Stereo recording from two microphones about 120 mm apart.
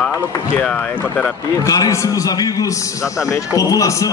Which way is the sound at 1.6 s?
25° left (ahead or behind).